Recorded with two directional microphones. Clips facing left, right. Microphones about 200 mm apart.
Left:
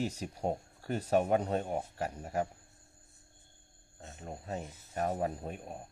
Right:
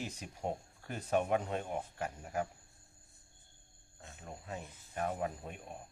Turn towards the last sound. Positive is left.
turn(degrees=40)  # may be behind; listen again after turning